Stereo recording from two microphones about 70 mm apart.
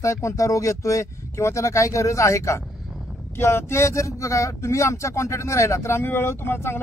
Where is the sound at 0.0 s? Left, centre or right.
Left.